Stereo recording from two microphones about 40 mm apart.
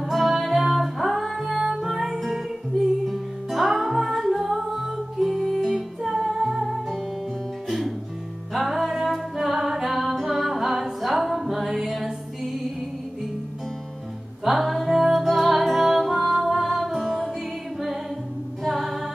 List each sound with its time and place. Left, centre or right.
0.1 s music: centre
8.5 s music: centre
14.4 s music: centre
18.6 s music: centre